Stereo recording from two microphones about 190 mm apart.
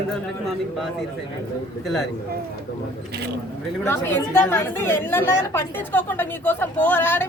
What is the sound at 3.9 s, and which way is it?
A woman's voice, 10° left (ahead or behind).